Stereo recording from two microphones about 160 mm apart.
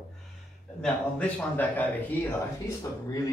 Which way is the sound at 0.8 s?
10° left (ahead or behind).